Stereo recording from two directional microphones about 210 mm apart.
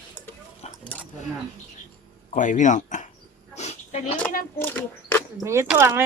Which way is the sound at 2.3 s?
35° left (ahead or behind).